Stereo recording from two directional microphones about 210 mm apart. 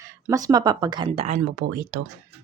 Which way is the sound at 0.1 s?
15° right (ahead or behind).